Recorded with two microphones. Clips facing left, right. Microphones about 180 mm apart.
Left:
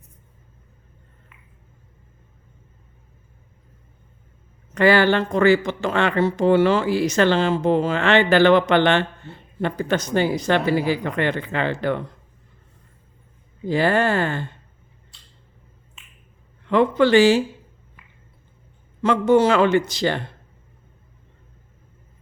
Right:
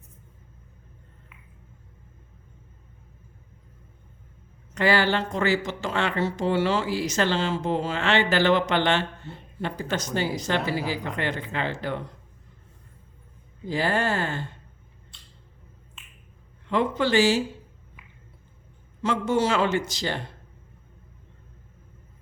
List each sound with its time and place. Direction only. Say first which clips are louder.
4.7 s speech: left 6 dB; 55° left (ahead or behind)
13.7 s speech: left 6 dB; 60° left (ahead or behind)
16.6 s speech: left 7 dB; 60° left (ahead or behind)
19.0 s speech: left 7 dB; 60° left (ahead or behind)